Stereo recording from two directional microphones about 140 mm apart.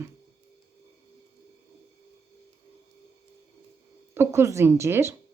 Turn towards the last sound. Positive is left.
turn(degrees=-20)  # may be behind; listen again after turning